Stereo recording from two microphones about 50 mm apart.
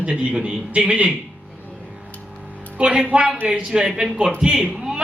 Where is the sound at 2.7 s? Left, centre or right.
Right.